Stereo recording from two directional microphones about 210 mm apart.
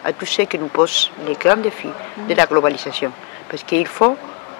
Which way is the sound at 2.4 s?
15° left (ahead or behind).